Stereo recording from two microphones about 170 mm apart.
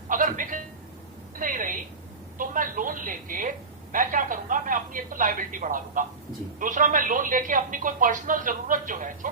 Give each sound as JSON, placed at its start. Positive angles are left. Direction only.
{"t": 0.1, "sound": "speech", "side_deg": -50}